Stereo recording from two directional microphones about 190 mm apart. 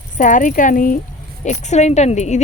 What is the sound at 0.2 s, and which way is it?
Speech, 45° left (ahead or behind).